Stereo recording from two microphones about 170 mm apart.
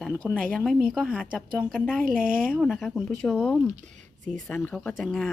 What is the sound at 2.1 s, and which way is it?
Speech, 55° right (ahead or behind).